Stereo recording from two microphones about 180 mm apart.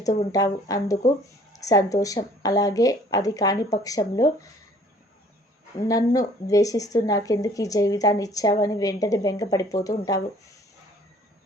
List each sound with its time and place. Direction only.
0.0 s speech: 20° left (ahead or behind)
5.8 s speech: 20° left (ahead or behind)